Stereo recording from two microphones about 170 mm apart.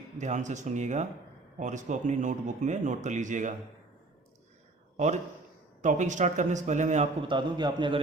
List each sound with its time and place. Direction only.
0.2 s speech: 45° right (ahead or behind)
4.9 s speech: 45° right (ahead or behind)
7.3 s a man's voice: 25° right (ahead or behind)